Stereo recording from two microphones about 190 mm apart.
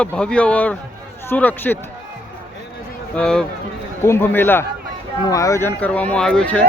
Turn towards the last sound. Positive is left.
turn(degrees=5)  # may be behind; listen again after turning